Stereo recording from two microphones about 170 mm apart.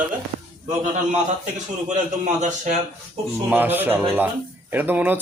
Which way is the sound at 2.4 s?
45° right (ahead or behind).